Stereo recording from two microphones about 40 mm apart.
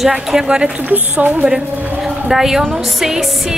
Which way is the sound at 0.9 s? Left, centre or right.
Right.